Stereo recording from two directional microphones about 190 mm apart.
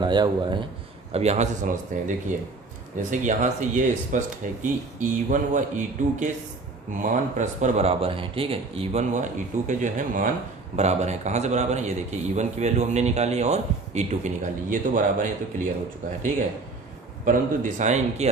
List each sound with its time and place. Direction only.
0.0 s a man's voice: 25° right (ahead or behind)
1.1 s a man's voice: 35° right (ahead or behind)
17.2 s a man's voice: 45° right (ahead or behind)